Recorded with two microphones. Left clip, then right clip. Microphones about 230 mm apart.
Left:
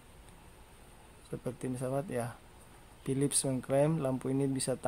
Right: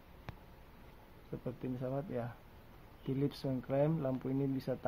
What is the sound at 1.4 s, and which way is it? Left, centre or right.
Speech, left.